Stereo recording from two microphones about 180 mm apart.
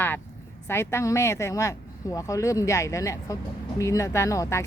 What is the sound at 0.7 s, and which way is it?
Speech, 15° left (ahead or behind).